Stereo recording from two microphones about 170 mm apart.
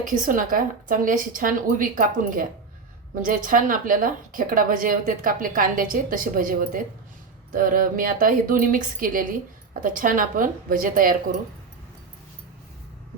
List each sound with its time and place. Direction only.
0.0 s a woman's voice: 50° right (ahead or behind)